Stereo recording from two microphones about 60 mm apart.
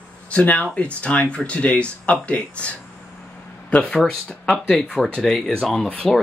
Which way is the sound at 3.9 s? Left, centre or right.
Centre.